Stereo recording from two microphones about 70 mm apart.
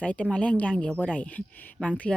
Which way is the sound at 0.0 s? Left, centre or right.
Centre.